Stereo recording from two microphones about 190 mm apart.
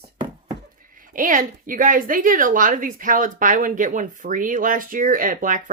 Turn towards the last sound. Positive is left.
turn(degrees=-45)  # may be behind; listen again after turning